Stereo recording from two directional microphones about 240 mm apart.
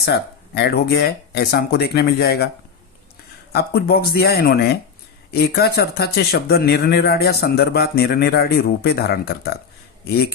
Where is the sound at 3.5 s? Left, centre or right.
Left.